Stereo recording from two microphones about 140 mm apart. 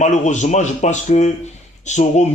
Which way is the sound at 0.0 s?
55° left (ahead or behind).